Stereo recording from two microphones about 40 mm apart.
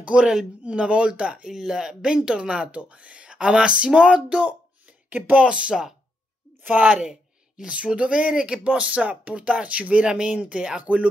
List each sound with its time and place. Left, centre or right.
0.0 s a man's voice: right
1.5 s speech: centre; by 4.6 s right
4.8 s a sound: right
5.4 s speech: right
6.6 s a woman's voice: right
6.9 s a sound: right
7.6 s speech: right